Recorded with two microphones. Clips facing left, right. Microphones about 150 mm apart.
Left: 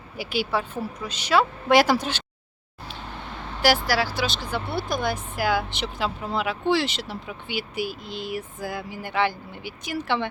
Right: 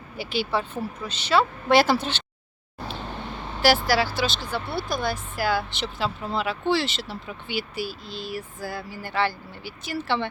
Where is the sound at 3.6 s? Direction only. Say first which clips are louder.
Right 1 dB; 15° left (ahead or behind).